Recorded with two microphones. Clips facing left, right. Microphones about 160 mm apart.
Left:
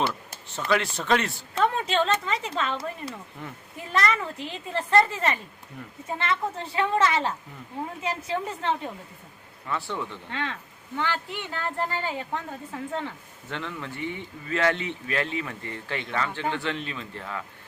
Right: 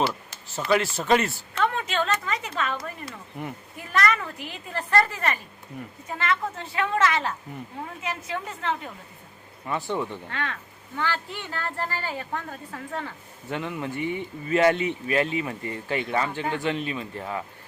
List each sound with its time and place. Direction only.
0.4 s speech: 5° right (ahead or behind)
1.5 s speech: 30° left (ahead or behind)
3.4 s speech: 15° right (ahead or behind)
3.9 s speech: 25° left (ahead or behind)
9.6 s speech: 15° right (ahead or behind)
10.2 s speech: 20° left (ahead or behind)
13.5 s speech: 15° right (ahead or behind)